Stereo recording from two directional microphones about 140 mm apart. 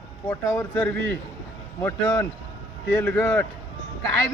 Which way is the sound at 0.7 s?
10° left (ahead or behind).